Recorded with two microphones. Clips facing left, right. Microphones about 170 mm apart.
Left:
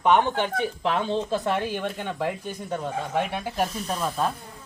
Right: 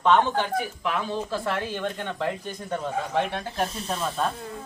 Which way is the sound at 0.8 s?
30° left (ahead or behind).